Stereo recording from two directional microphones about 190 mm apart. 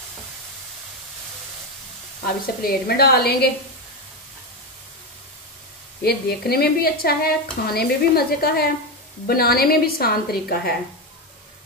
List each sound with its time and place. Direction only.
2.2 s a woman's voice: 50° left (ahead or behind)
6.0 s a woman's voice: 55° left (ahead or behind)